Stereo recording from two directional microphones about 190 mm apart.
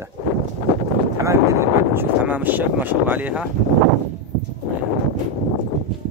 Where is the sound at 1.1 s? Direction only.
15° right (ahead or behind).